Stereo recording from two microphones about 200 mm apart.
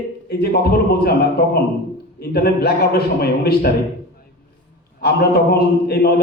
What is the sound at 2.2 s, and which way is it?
A man's voice, 50° left (ahead or behind).